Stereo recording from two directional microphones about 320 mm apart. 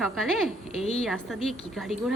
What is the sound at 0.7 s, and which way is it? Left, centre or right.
Speech, centre.